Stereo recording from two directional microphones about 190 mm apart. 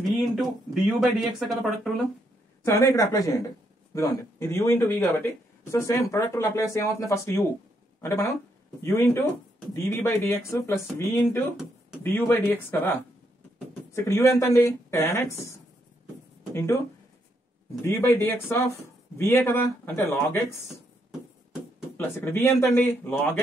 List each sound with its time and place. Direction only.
0.2 s speech: centre (ahead or behind)
2.6 s speech: 15° left (ahead or behind)
13.9 s speech: 15° left (ahead or behind)
17.8 s speech: 15° left (ahead or behind)
21.9 s speech: 10° left (ahead or behind)